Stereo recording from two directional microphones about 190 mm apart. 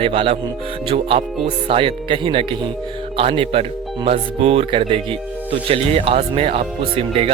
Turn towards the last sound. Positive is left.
turn(degrees=-30)  # may be behind; listen again after turning